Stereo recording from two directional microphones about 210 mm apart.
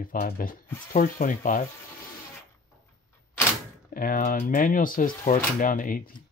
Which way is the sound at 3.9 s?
40° left (ahead or behind).